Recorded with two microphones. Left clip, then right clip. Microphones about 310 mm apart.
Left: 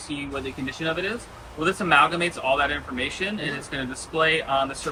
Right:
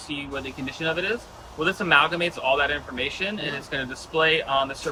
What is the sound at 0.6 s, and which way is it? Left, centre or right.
Speech, right.